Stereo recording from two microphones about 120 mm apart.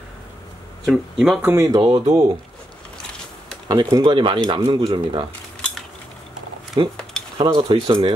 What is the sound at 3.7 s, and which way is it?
Speech, 35° right (ahead or behind).